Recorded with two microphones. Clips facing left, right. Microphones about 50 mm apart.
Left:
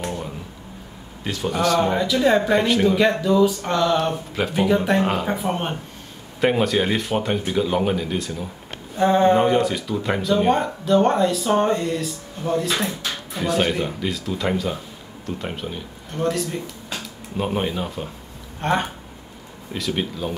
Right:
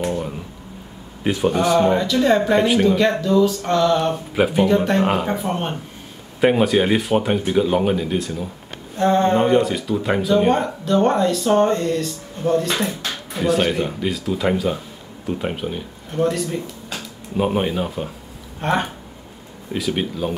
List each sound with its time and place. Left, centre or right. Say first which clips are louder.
0.0 s a sound: right 5 dB; centre
1.2 s a man's voice: right 4 dB; right
1.8 s speech: right 3 dB; centre
6.4 s speech: right 3 dB; centre